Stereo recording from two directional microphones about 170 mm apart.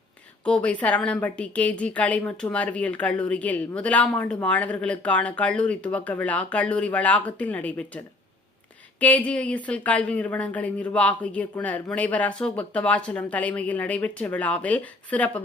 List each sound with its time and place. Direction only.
0.4 s a woman's voice: 5° left (ahead or behind)